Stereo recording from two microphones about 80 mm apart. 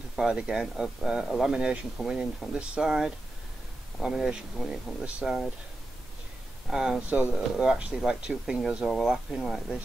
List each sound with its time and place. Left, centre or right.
0.1 s speech: centre
6.7 s speech: centre